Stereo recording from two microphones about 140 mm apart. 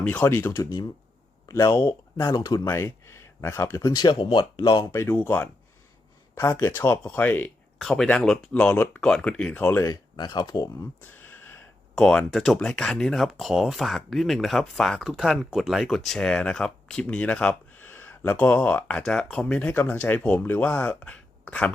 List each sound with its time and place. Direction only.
0.0 s speech: 15° left (ahead or behind); by 4.9 s 30° left (ahead or behind)
4.9 s speech: 20° left (ahead or behind)
9.8 s speech: 30° left (ahead or behind)
11.0 s speech: 15° left (ahead or behind)